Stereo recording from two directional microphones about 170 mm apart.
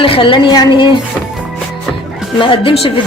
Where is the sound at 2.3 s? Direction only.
30° left (ahead or behind).